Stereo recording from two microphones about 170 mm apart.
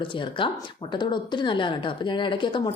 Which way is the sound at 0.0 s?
30° left (ahead or behind).